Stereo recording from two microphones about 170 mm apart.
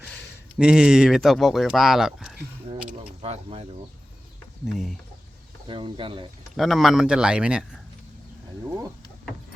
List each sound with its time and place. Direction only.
0.6 s speech: 5° right (ahead or behind)
3.2 s speech: 35° right (ahead or behind)
4.6 s speech: centre (ahead or behind)
5.6 s speech: 30° right (ahead or behind)
6.6 s speech: centre (ahead or behind)